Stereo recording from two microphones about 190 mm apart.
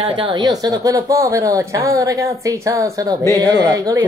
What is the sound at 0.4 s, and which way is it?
A woman's voice, 20° right (ahead or behind).